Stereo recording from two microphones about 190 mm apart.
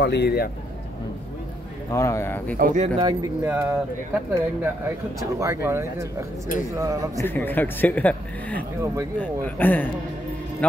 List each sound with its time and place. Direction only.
0.0 s speech: 60° left (ahead or behind)
1.9 s speech: 15° left (ahead or behind)
2.5 s speech: 45° right (ahead or behind)
3.0 s speech: 20° right (ahead or behind)
3.4 s speech: 10° right (ahead or behind)
7.2 s a man's voice: 10° left (ahead or behind)